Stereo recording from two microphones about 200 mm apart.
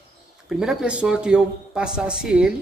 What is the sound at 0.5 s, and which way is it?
A man's voice, 5° right (ahead or behind).